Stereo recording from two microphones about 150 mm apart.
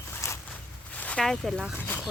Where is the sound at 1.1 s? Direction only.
Centre (ahead or behind).